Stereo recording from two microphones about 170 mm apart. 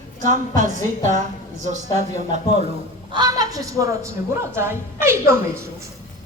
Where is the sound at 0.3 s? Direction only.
45° right (ahead or behind).